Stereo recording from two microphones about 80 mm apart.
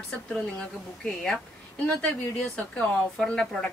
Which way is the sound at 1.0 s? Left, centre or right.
Centre.